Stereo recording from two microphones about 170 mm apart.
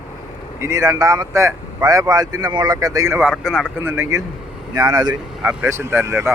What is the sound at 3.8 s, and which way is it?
Speech, 15° right (ahead or behind).